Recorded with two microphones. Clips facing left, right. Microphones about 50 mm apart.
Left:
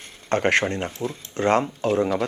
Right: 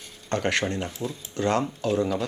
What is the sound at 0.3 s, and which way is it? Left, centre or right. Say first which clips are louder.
Speech: left 5 dB; left.